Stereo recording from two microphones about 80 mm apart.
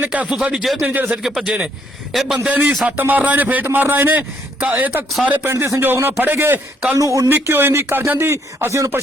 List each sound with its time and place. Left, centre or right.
0.0 s speech: centre
0.9 s a man's voice: centre
1.2 s speech: centre
2.5 s a man's voice: right
7.0 s speech: right
7.3 s speech: right